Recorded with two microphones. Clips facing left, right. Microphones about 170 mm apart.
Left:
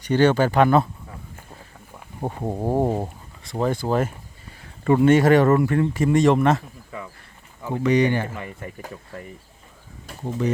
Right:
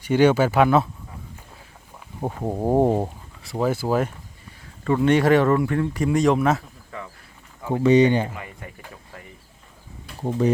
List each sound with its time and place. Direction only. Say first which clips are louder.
0.0 s speech: right 1 dB; 10° right (ahead or behind)
2.2 s speech: right 1 dB; 5° right (ahead or behind)
3.4 s speech: even; 5° right (ahead or behind)
4.8 s speech: left 3 dB; 15° left (ahead or behind)
5.0 s speech: left 1 dB; centre (ahead or behind)
7.7 s speech: right 3 dB; 25° right (ahead or behind)
8.4 s speech: left 4 dB; 40° left (ahead or behind)